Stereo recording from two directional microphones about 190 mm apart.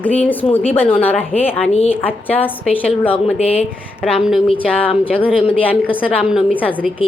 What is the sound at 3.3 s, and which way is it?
Speech, 30° left (ahead or behind).